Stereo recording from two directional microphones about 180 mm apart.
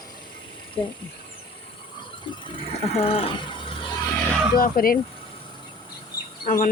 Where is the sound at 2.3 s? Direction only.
30° left (ahead or behind).